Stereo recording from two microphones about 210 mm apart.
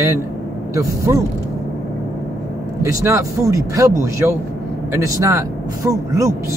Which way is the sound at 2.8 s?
15° right (ahead or behind).